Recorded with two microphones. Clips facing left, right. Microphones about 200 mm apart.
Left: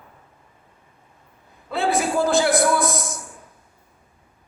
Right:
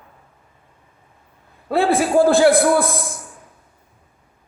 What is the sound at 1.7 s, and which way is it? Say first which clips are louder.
Speech: right 6 dB; 55° right (ahead or behind).